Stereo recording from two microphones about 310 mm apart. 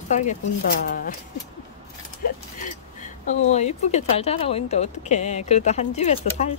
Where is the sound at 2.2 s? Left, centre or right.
Left.